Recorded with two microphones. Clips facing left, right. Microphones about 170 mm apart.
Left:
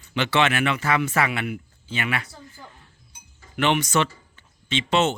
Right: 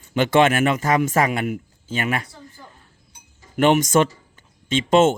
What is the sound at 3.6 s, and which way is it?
Speech, 45° right (ahead or behind).